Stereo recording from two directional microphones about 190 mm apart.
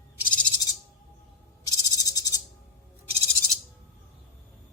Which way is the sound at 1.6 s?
20° left (ahead or behind).